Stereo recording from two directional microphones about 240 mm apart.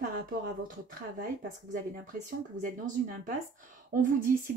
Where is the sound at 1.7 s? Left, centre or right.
Right.